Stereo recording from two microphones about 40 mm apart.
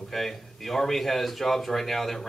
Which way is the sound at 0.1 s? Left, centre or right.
Centre.